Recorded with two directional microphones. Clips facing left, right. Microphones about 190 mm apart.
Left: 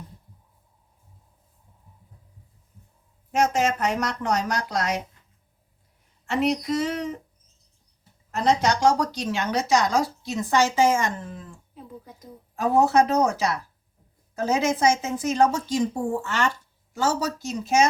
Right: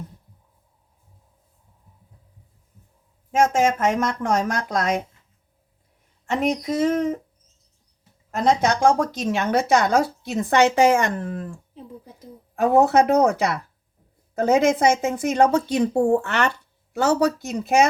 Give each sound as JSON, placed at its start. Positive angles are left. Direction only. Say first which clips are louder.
{"t": 3.4, "sound": "speech", "louder": "right 4 dB", "side_deg": -50}
{"t": 6.4, "sound": "speech", "louder": "right 2 dB", "side_deg": -50}
{"t": 8.6, "sound": "a woman's voice", "louder": "right 2 dB", "side_deg": -50}
{"t": 12.5, "sound": "a woman's voice", "louder": "right 3 dB", "side_deg": -60}